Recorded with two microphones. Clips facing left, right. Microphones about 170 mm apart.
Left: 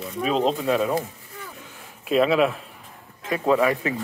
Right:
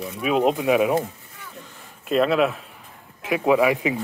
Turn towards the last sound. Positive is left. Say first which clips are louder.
# right 2 dB
turn(degrees=-10)  # may be behind; listen again after turning